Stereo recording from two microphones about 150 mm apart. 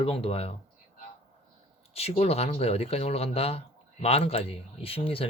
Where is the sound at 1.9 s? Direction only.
45° left (ahead or behind).